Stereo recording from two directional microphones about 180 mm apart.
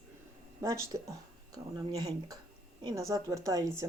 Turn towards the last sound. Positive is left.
turn(degrees=-20)  # may be behind; listen again after turning